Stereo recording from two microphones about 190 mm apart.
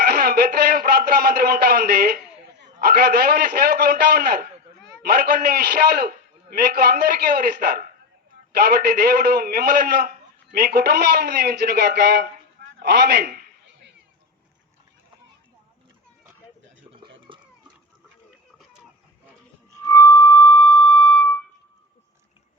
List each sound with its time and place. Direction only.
0.0 s a man's voice: 55° right (ahead or behind)
17.0 s a sound: 25° right (ahead or behind)
19.8 s music: 15° left (ahead or behind)